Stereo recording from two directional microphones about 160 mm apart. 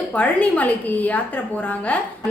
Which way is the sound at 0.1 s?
10° left (ahead or behind).